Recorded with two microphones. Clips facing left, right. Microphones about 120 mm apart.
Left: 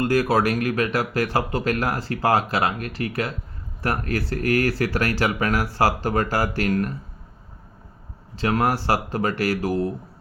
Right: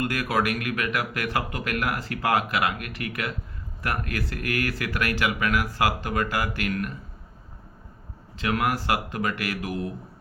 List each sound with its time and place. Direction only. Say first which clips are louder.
0.0 s speech: left 6 dB; 30° left (ahead or behind)
8.4 s speech: left 4 dB; 35° left (ahead or behind)